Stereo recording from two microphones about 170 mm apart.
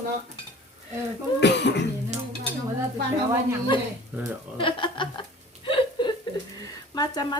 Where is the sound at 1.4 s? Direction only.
90° left.